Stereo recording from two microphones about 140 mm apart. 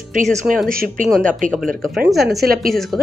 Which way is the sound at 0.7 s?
90° right.